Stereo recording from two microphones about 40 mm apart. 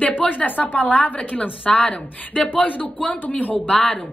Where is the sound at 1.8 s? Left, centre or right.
Left.